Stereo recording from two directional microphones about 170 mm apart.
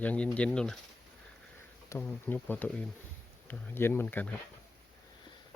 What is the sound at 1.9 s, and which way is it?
Speech, 10° left (ahead or behind).